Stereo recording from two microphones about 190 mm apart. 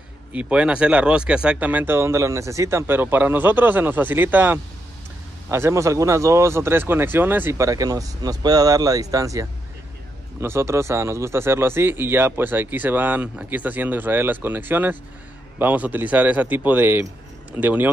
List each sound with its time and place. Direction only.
0.3 s speech: 5° right (ahead or behind)